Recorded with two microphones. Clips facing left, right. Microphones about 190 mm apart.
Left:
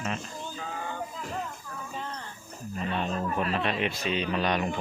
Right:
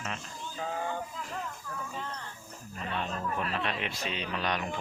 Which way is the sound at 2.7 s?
20° left (ahead or behind).